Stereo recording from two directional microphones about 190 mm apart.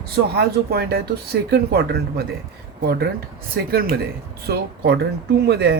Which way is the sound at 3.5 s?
55° right (ahead or behind).